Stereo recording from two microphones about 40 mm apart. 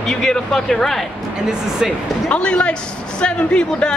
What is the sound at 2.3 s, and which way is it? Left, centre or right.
A man's voice, left.